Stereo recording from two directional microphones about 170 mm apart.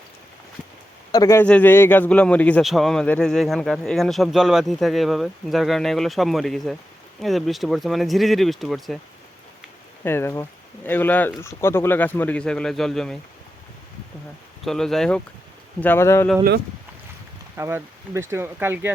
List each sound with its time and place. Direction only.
1.1 s a man's voice: 20° left (ahead or behind); by 9.0 s centre (ahead or behind)
10.0 s speech: 15° left (ahead or behind)
14.6 s a man's voice: centre (ahead or behind)
17.6 s speech: 15° right (ahead or behind)